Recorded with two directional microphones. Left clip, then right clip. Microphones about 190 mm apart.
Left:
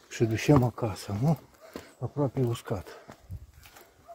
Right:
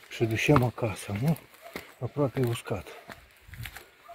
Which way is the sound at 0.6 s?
Centre (ahead or behind).